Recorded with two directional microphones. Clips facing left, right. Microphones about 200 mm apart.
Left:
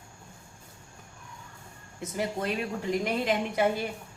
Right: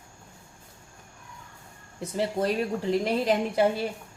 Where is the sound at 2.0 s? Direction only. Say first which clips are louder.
Right 4 dB; 30° right (ahead or behind).